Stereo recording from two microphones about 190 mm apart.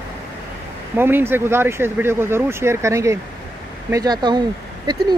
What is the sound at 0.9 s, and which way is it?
Speech, 10° right (ahead or behind).